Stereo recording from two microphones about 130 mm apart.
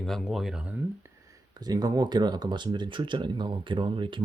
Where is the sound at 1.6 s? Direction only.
30° right (ahead or behind).